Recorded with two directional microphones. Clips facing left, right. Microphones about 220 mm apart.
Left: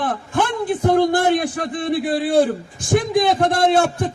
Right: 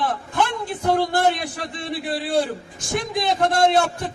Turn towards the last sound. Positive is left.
turn(degrees=50)  # may be behind; listen again after turning